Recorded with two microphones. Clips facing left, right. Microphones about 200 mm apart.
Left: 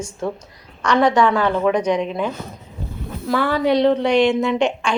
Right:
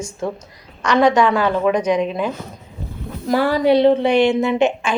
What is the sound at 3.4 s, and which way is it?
Speech, 10° right (ahead or behind).